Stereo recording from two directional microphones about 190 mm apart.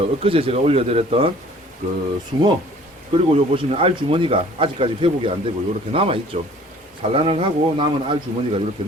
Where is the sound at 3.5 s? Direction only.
30° right (ahead or behind).